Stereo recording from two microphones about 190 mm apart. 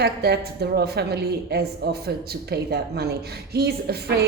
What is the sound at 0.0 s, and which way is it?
A woman's voice, 55° right (ahead or behind).